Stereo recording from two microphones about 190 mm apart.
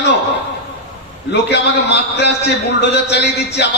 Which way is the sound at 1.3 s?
65° left (ahead or behind).